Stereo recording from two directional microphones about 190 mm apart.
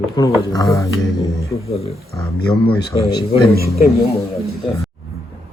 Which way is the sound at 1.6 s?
30° left (ahead or behind).